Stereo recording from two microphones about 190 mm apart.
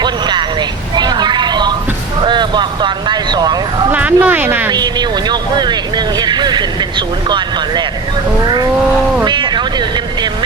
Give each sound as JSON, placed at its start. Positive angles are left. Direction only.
{"t": 0.0, "sound": "vehicle", "side_deg": -25}
{"t": 0.9, "sound": "a sound", "side_deg": -20}
{"t": 2.2, "sound": "vehicle", "side_deg": -25}
{"t": 3.9, "sound": "speech", "side_deg": -10}
{"t": 4.7, "sound": "speech", "side_deg": -20}
{"t": 9.2, "sound": "speech", "side_deg": -25}